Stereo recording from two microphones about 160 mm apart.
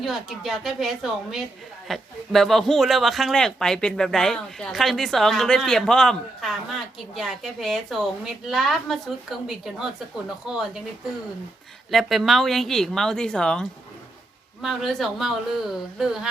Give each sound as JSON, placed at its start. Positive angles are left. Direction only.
{"t": 0.0, "sound": "speech", "side_deg": 0}
{"t": 11.9, "sound": "speech", "side_deg": 0}